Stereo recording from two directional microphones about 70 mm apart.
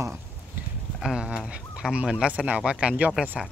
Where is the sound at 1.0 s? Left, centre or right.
Centre.